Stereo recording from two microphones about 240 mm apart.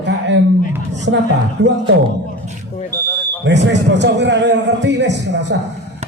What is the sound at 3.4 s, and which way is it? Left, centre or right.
A man's voice, right.